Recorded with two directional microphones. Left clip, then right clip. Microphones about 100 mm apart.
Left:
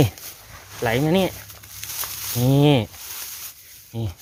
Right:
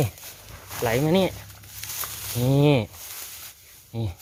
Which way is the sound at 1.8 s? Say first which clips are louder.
Left 2 dB; 55° left (ahead or behind).